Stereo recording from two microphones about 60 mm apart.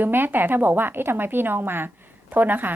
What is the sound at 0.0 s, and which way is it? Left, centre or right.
A woman's voice, right.